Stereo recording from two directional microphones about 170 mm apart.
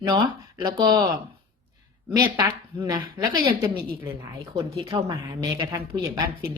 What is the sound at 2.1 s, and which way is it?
Speech, 20° right (ahead or behind).